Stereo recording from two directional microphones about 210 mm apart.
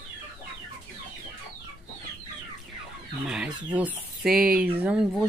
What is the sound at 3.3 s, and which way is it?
Speech, 5° right (ahead or behind).